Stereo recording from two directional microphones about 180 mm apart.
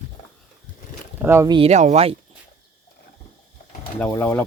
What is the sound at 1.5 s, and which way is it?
Speech, 35° right (ahead or behind).